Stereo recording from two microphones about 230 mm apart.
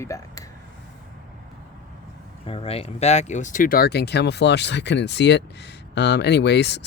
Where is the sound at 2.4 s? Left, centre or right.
Left.